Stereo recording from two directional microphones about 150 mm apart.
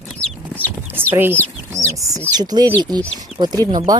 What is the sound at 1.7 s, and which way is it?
Speech, 20° right (ahead or behind).